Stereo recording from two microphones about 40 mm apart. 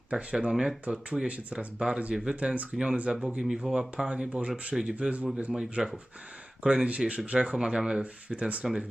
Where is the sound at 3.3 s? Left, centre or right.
Centre.